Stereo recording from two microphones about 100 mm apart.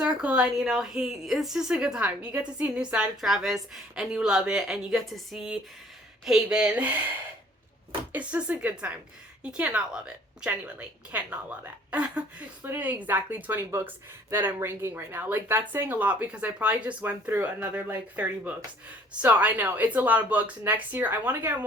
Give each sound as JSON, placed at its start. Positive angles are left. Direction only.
{"t": 0.0, "sound": "a woman's voice", "side_deg": -10}
{"t": 8.1, "sound": "a woman's voice", "side_deg": -15}